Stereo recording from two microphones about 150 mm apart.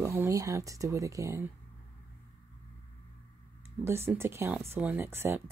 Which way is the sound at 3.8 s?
15° right (ahead or behind).